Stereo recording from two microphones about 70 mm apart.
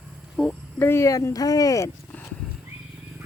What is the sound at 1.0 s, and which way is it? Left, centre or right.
Speech, left.